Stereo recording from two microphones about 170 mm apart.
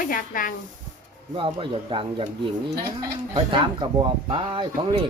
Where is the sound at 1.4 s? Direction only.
30° right (ahead or behind).